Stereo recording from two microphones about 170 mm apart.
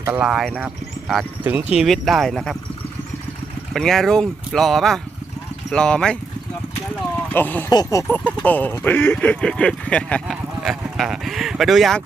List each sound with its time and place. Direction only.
0.0 s speech: 5° right (ahead or behind)
3.7 s speech: centre (ahead or behind)
7.3 s speech: 10° left (ahead or behind)